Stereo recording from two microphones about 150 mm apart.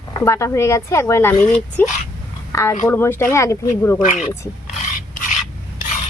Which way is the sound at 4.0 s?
55° left (ahead or behind).